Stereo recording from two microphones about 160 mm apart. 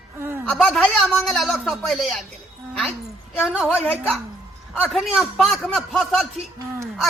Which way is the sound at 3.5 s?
5° right (ahead or behind).